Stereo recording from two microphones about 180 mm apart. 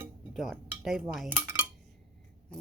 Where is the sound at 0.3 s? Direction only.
Centre (ahead or behind).